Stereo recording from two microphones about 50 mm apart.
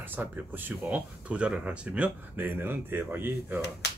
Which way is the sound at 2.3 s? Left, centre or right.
Right.